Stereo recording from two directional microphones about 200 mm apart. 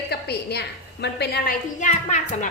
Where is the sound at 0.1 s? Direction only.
55° left (ahead or behind).